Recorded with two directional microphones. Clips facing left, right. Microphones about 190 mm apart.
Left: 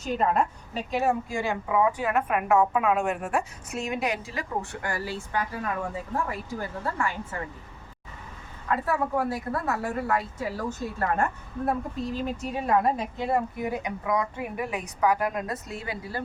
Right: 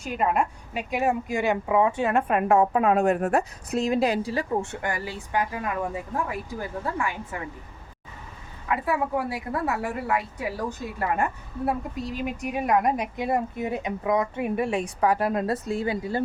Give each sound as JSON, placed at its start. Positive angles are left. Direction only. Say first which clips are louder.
{"t": 0.0, "sound": "a woman's voice", "louder": "even", "side_deg": -10}
{"t": 6.6, "sound": "a woman's voice", "louder": "right 1 dB", "side_deg": -15}
{"t": 8.6, "sound": "a woman's voice", "louder": "right 1 dB", "side_deg": -10}